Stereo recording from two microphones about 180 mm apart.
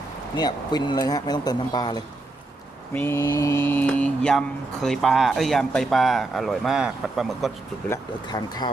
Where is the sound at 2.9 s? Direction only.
10° left (ahead or behind).